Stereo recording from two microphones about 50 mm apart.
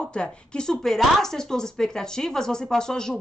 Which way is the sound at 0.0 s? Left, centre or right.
Centre.